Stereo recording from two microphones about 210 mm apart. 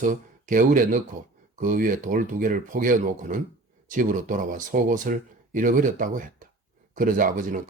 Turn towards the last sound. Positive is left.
turn(degrees=-40)  # may be behind; listen again after turning